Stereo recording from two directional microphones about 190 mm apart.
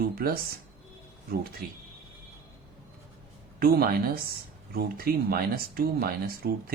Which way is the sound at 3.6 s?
50° right (ahead or behind).